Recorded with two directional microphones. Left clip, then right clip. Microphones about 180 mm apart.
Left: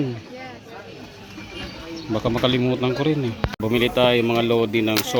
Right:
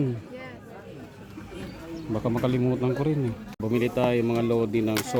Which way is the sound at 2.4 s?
5° right (ahead or behind).